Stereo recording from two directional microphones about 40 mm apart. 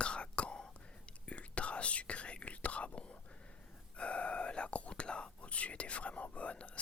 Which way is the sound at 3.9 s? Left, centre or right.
Left.